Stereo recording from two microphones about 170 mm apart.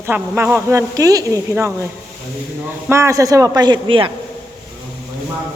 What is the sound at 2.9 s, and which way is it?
A woman's voice, 15° right (ahead or behind).